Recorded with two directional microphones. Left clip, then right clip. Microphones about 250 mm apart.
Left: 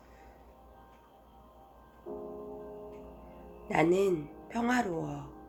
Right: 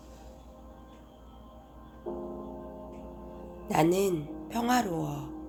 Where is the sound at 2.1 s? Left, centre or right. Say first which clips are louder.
Right 4 dB; right.